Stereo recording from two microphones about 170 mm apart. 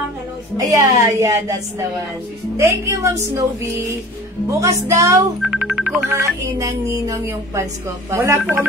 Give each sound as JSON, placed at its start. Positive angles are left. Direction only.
{"t": 0.6, "sound": "a woman's voice", "side_deg": -20}
{"t": 2.5, "sound": "music", "side_deg": -20}
{"t": 5.4, "sound": "music", "side_deg": -5}
{"t": 6.1, "sound": "music", "side_deg": -20}